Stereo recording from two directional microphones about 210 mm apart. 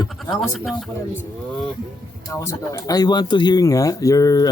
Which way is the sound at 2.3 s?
15° left (ahead or behind).